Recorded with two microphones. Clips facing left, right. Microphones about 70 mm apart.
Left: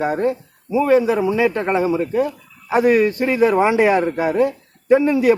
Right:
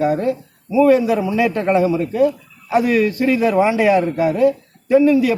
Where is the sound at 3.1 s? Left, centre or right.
Left.